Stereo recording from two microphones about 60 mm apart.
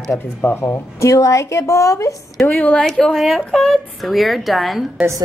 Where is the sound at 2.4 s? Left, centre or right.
Left.